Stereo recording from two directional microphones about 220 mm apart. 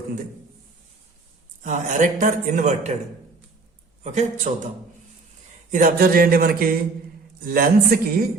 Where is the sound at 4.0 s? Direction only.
30° right (ahead or behind).